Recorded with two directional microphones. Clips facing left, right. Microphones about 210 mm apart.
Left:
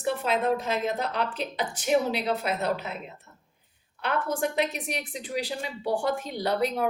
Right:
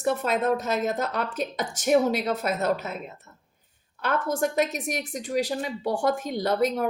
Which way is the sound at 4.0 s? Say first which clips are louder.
Right 2 dB; 45° right (ahead or behind).